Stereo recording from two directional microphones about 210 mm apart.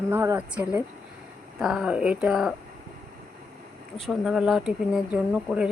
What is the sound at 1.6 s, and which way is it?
Speech, 5° right (ahead or behind).